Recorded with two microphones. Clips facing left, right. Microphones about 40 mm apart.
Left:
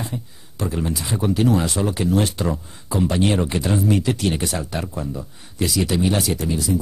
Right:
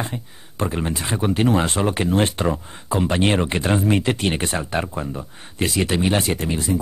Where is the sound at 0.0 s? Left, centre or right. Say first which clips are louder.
Right 2 dB; right.